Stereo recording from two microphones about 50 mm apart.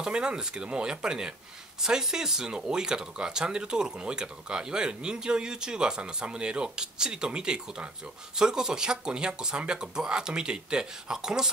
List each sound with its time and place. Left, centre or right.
0.0 s speech: centre